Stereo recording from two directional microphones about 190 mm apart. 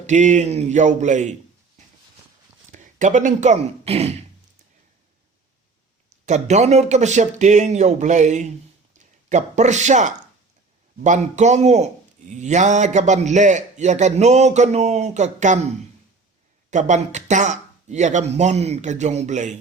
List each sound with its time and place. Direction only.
0.1 s a man's voice: 40° right (ahead or behind)
2.7 s speech: 40° right (ahead or behind)
6.1 s a man's voice: 35° right (ahead or behind)